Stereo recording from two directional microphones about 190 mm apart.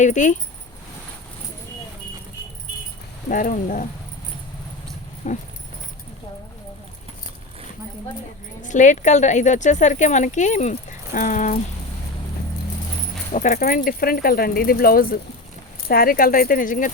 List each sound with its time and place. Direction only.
0.0 s speech: 40° left (ahead or behind)
3.2 s speech: 45° left (ahead or behind)
5.2 s speech: 40° left (ahead or behind)
8.6 s speech: 40° left (ahead or behind)
13.3 s speech: 40° left (ahead or behind)